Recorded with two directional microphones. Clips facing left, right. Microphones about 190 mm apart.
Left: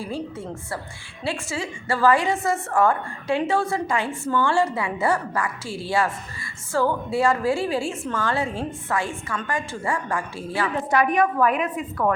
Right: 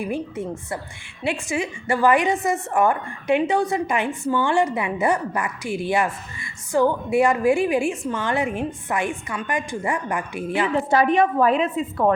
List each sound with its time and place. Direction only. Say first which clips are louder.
0.0 s a woman's voice: right 4 dB; 20° right (ahead or behind)